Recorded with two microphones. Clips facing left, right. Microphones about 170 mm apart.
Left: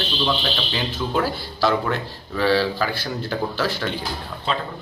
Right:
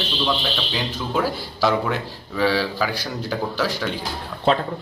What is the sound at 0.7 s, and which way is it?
A man's voice, 5° right (ahead or behind).